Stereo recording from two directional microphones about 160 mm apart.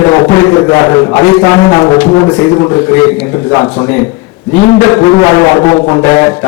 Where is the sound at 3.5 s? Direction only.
25° left (ahead or behind).